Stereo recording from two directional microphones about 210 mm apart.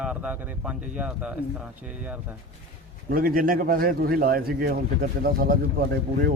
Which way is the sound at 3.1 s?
45° right (ahead or behind).